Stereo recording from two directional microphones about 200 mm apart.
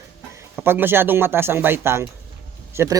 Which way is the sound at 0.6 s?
10° right (ahead or behind).